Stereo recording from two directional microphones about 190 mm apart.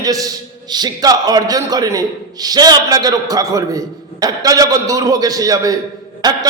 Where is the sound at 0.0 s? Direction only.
20° right (ahead or behind).